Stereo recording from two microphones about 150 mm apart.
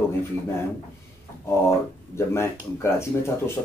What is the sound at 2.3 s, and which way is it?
Speech, 15° left (ahead or behind).